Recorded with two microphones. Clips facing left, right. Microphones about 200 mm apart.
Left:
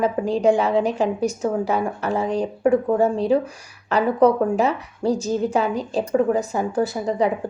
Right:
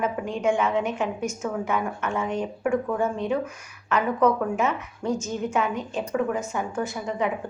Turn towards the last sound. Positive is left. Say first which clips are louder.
# left 6 dB
turn(degrees=35)  # may be behind; listen again after turning